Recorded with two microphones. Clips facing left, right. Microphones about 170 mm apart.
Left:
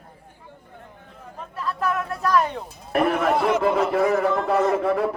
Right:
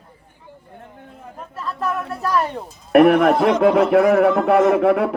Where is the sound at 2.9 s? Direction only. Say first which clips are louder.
Right 8 dB; 60° right (ahead or behind).